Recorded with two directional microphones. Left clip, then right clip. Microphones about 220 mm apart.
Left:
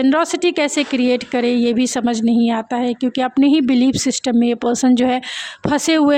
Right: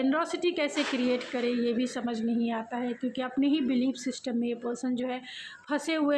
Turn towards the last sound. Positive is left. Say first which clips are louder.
# left 13 dB
turn(degrees=45)  # may be behind; listen again after turning